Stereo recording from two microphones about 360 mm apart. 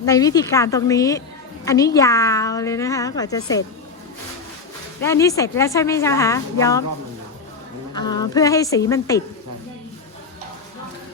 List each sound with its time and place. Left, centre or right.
0.0 s a woman's voice: centre
5.0 s a woman's voice: centre
7.9 s a woman's voice: centre